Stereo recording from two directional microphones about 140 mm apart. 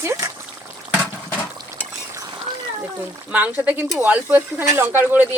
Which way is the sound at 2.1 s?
30° right (ahead or behind).